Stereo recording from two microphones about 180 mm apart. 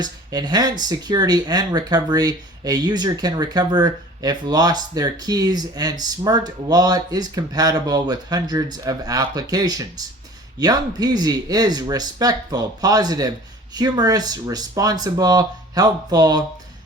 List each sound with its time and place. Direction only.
0.0 s speech: 20° right (ahead or behind)